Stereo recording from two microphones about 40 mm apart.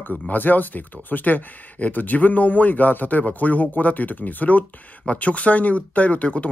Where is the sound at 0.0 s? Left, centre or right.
Left.